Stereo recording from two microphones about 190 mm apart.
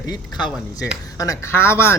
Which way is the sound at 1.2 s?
15° left (ahead or behind).